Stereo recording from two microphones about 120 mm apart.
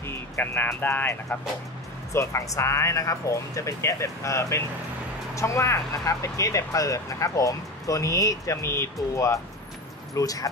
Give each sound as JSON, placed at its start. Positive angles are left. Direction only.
{"t": 0.0, "sound": "speech", "side_deg": 15}